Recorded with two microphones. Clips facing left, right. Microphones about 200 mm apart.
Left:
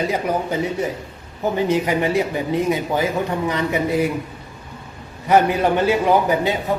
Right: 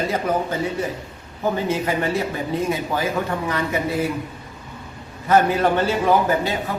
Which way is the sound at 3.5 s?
20° left (ahead or behind).